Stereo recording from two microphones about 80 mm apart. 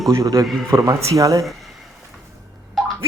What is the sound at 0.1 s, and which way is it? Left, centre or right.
Speech, right.